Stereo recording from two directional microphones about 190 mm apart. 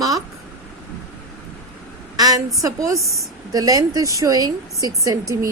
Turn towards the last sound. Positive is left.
turn(degrees=-15)  # may be behind; listen again after turning